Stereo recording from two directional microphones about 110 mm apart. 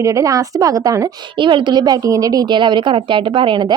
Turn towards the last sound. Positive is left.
turn(degrees=-45)  # may be behind; listen again after turning